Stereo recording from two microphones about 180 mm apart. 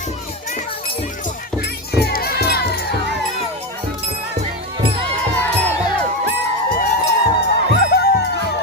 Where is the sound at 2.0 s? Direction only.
60° left (ahead or behind).